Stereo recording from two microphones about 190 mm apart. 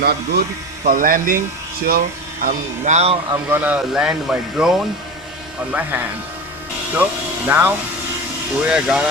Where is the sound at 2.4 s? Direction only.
40° right (ahead or behind).